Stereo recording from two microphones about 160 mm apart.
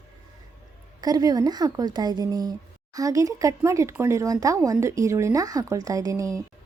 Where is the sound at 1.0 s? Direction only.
25° right (ahead or behind).